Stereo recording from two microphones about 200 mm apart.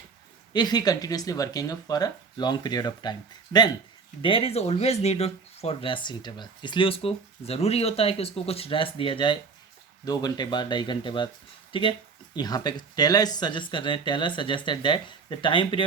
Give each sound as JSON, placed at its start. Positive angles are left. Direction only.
{"t": 0.5, "sound": "speech", "side_deg": 20}